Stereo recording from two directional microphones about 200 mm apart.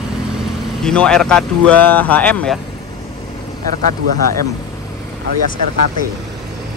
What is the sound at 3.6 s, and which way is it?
Speech, 45° right (ahead or behind).